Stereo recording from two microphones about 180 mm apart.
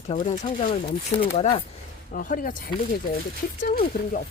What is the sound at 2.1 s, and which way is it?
Speech, 50° left (ahead or behind).